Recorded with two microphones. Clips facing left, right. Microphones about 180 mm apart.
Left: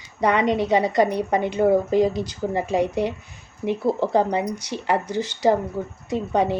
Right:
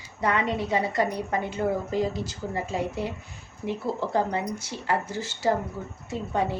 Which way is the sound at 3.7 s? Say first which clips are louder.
Left 7 dB; 15° left (ahead or behind).